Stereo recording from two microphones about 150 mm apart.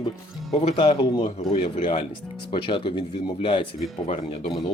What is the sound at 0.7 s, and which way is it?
Speech, 35° left (ahead or behind).